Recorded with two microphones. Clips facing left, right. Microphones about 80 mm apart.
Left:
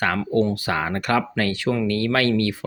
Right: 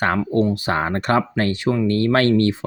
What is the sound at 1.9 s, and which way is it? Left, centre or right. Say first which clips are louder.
Speech: right 5 dB; right.